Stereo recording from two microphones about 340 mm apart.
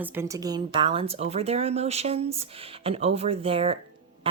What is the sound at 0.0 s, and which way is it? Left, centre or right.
A woman's voice, centre.